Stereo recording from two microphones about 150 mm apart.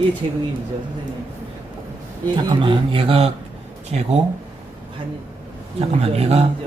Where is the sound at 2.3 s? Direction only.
35° right (ahead or behind).